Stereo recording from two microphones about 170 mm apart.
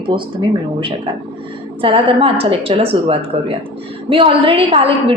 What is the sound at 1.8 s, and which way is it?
A woman's voice, 30° right (ahead or behind).